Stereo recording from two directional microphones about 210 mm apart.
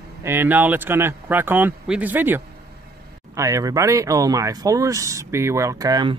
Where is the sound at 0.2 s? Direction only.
10° right (ahead or behind).